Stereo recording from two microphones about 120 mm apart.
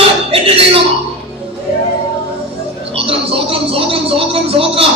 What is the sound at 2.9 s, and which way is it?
A woman's voice, 50° right (ahead or behind).